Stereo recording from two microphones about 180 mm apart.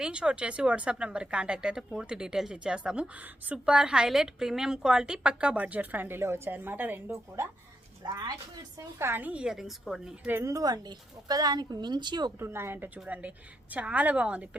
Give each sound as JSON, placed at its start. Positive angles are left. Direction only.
{"t": 0.0, "sound": "a woman's voice", "side_deg": -5}
{"t": 8.0, "sound": "speech", "side_deg": -25}
{"t": 9.0, "sound": "a woman's voice", "side_deg": -10}